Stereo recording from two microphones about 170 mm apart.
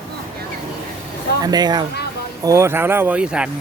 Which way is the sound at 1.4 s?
25° right (ahead or behind).